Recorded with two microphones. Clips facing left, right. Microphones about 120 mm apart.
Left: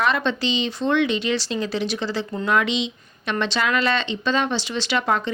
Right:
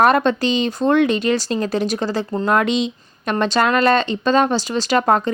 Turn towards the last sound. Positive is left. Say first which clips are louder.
# right 6 dB
turn(degrees=-45)  # may be behind; listen again after turning